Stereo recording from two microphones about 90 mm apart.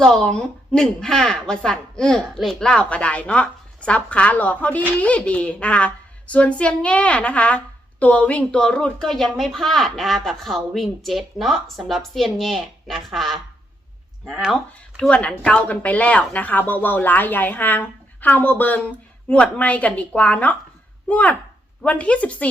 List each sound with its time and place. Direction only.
0.0 s speech: 5° left (ahead or behind)
15.0 s speech: 10° left (ahead or behind)